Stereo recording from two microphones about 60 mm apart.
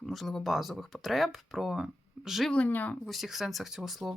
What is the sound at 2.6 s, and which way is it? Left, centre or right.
Speech, left.